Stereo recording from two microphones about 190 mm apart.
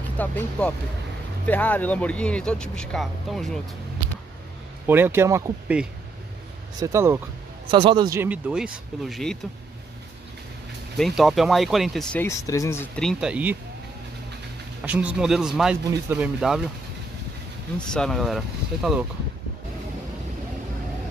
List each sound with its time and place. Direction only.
0.2 s speech: 10° left (ahead or behind)
4.8 s speech: 10° right (ahead or behind)
7.7 s speech: 25° right (ahead or behind)
8.2 s speech: 5° right (ahead or behind)
11.0 s speech: centre (ahead or behind)
14.9 s speech: 5° right (ahead or behind)
17.7 s speech: 5° left (ahead or behind)